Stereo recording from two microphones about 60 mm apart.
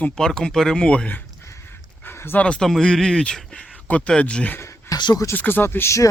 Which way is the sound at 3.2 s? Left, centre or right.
Centre.